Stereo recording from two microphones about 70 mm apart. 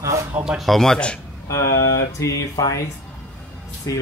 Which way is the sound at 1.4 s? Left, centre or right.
Left.